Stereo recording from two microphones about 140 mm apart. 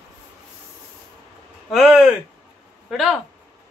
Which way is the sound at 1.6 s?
Centre (ahead or behind).